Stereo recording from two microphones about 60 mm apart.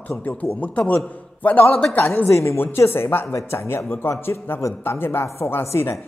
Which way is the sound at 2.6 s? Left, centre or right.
Left.